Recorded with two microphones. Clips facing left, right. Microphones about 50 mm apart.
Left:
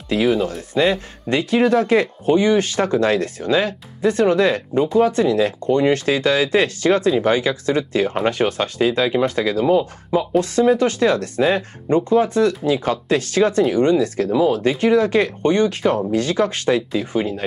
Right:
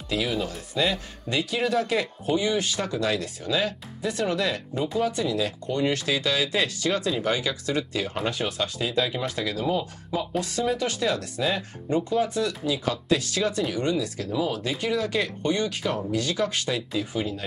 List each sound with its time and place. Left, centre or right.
0.1 s speech: left